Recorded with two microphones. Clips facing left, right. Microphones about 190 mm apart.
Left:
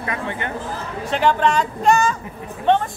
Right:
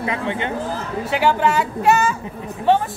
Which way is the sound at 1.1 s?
10° right (ahead or behind).